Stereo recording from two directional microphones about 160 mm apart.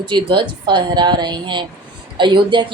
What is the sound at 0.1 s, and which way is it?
A woman's voice, 30° right (ahead or behind).